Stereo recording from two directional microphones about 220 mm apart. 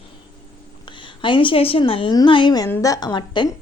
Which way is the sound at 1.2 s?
20° left (ahead or behind).